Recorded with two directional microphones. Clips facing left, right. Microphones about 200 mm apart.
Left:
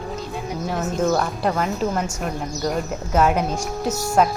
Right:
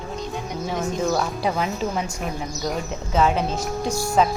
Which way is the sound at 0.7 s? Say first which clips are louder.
Left 2 dB; 5° left (ahead or behind).